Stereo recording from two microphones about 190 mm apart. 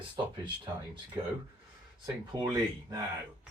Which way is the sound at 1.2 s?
20° right (ahead or behind).